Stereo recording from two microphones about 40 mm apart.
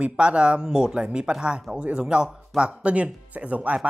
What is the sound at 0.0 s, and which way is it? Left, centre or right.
Speech, right.